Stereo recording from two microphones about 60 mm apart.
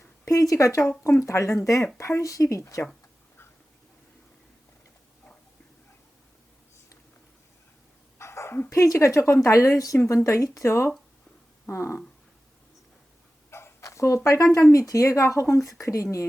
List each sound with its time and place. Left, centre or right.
0.3 s speech: left
2.0 s speech: left
2.2 s speech: left
8.2 s dog: left
8.7 s speech: left
13.5 s a sound: left
13.8 s a sound: left
14.3 s speech: left